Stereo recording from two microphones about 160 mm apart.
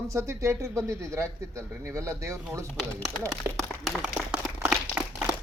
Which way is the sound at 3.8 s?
Centre (ahead or behind).